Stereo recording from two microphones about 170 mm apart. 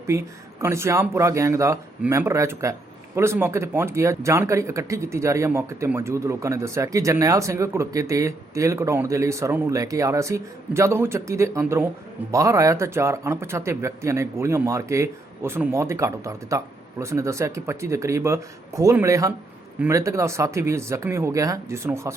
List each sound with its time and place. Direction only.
0.1 s speech: 15° right (ahead or behind)